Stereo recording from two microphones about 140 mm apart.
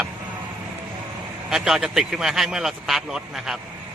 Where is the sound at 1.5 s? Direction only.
5° right (ahead or behind).